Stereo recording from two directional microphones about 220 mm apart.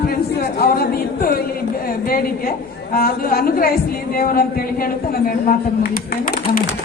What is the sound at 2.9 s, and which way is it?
Speech, 45° left (ahead or behind).